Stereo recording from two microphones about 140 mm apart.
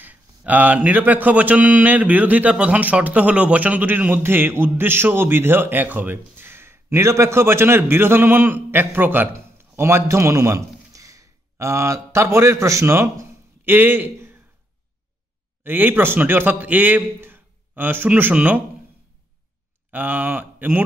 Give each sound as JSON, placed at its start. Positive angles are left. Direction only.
{"t": 0.0, "sound": "a man's voice", "side_deg": -10}
{"t": 15.6, "sound": "speech", "side_deg": -15}
{"t": 19.9, "sound": "speech", "side_deg": -10}